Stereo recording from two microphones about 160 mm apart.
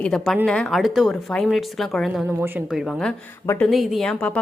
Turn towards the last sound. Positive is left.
turn(degrees=5)  # may be behind; listen again after turning